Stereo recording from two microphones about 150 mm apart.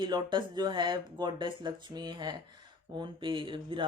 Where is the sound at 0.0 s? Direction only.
30° right (ahead or behind).